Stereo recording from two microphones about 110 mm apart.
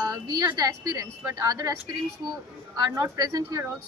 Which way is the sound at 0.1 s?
35° right (ahead or behind).